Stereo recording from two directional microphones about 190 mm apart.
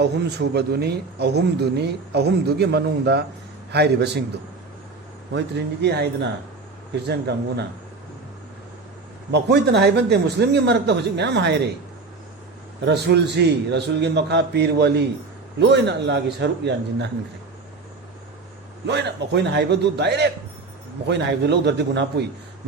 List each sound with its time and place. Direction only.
0.0 s speech: 60° right (ahead or behind)
5.3 s speech: 65° right (ahead or behind)
9.3 s speech: 60° right (ahead or behind)
12.8 s a man's voice: 65° right (ahead or behind)
18.9 s speech: 65° right (ahead or behind)